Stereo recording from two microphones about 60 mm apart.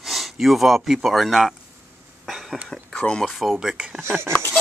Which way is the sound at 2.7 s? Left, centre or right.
Centre.